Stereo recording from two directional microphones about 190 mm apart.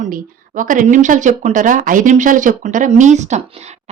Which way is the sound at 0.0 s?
45° right (ahead or behind).